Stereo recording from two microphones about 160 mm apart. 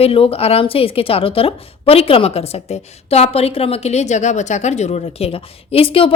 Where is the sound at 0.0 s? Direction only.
35° left (ahead or behind).